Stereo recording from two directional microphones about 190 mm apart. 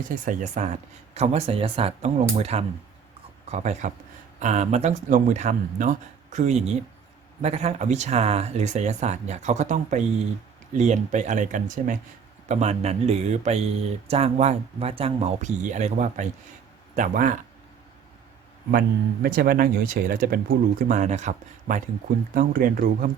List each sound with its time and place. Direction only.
0.1 s speech: 40° right (ahead or behind)
18.7 s speech: 50° right (ahead or behind)